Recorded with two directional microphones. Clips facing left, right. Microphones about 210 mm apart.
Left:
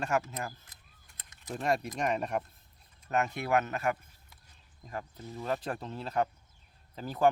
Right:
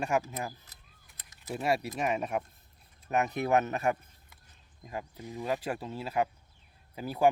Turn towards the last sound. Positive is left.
turn(degrees=-10)  # may be behind; listen again after turning